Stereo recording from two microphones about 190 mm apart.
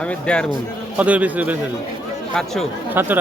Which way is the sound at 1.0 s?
10° right (ahead or behind).